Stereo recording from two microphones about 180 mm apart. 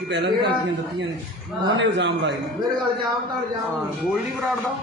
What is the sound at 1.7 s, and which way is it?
Speech, 80° right.